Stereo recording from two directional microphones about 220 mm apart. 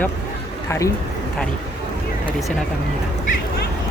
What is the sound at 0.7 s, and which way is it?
Speech, 15° left (ahead or behind).